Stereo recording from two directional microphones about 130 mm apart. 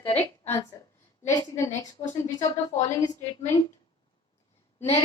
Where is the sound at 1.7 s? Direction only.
65° left (ahead or behind).